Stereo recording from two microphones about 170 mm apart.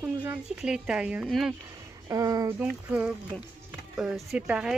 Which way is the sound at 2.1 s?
20° right (ahead or behind).